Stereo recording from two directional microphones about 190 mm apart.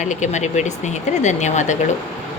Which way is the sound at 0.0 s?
40° left (ahead or behind).